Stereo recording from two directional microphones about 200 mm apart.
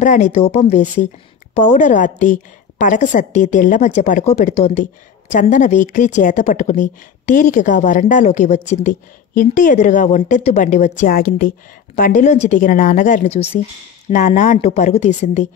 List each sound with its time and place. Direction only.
0.0 s a woman's voice: 40° left (ahead or behind)